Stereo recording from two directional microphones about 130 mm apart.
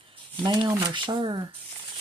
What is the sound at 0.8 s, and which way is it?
Speech, 35° right (ahead or behind).